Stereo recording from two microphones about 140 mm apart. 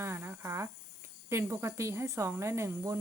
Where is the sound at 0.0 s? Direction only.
20° right (ahead or behind).